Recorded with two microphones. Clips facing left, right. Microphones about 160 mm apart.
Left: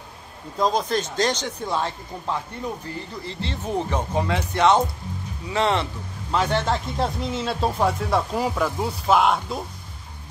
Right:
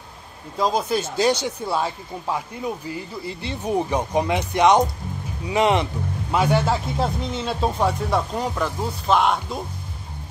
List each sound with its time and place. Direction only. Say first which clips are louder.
0.6 s speech: even; 5° right (ahead or behind)